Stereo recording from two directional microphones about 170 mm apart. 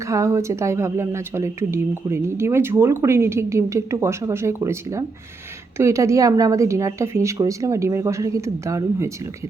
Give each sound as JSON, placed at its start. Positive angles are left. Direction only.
{"t": 0.1, "sound": "speech", "side_deg": -15}